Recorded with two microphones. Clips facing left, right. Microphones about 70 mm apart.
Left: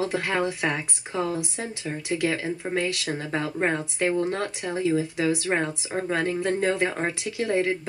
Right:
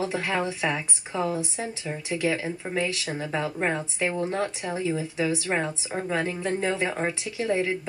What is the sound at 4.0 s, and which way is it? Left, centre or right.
Speech, centre.